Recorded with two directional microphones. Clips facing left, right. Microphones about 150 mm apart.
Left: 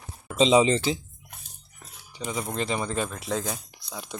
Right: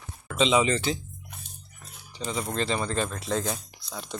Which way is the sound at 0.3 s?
35° left (ahead or behind).